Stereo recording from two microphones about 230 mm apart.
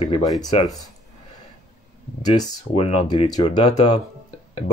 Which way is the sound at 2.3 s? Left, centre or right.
Left.